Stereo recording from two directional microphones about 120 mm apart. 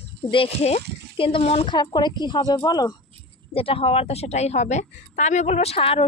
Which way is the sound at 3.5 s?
50° left (ahead or behind).